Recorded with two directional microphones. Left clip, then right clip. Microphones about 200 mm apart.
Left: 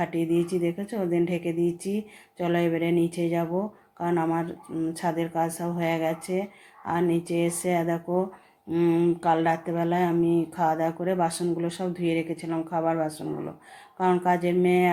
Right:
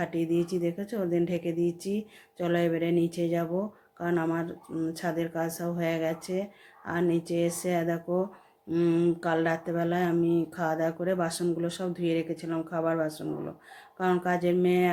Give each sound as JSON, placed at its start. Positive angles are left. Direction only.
{"t": 0.0, "sound": "speech", "side_deg": -15}